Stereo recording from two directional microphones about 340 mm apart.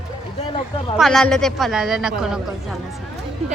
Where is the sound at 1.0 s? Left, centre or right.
Centre.